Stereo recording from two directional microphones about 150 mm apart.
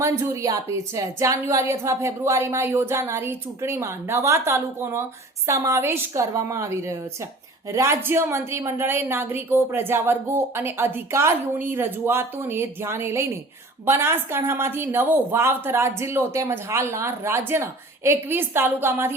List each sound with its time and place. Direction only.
0.0 s a woman's voice: 20° right (ahead or behind)